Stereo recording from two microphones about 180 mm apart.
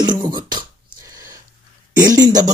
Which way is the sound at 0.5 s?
20° right (ahead or behind).